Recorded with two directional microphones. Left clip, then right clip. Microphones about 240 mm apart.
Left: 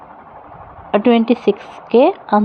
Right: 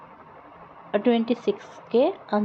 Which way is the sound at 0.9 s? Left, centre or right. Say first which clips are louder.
Left 9 dB; left.